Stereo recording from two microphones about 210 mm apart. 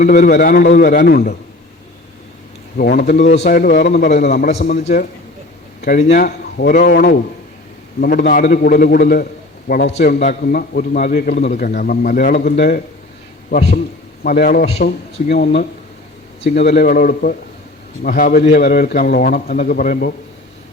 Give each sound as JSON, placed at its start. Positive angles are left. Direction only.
{"t": 0.0, "sound": "a man's voice", "side_deg": 40}
{"t": 2.7, "sound": "a man's voice", "side_deg": 45}
{"t": 3.3, "sound": "a man's voice", "side_deg": 35}
{"t": 6.0, "sound": "a man's voice", "side_deg": 35}
{"t": 13.5, "sound": "a man's voice", "side_deg": 30}
{"t": 14.3, "sound": "a man's voice", "side_deg": 45}
{"t": 14.6, "sound": "a man's voice", "side_deg": 30}
{"t": 14.8, "sound": "a man's voice", "side_deg": 50}